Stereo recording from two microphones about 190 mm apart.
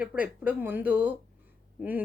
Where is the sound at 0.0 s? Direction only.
5° right (ahead or behind).